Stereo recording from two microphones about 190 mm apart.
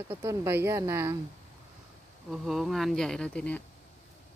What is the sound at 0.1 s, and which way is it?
Speech, 15° right (ahead or behind).